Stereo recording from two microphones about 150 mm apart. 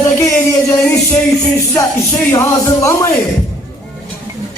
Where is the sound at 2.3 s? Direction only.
20° left (ahead or behind).